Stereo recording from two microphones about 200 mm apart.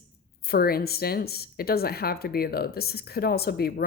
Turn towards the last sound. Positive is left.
turn(degrees=50)  # may be behind; listen again after turning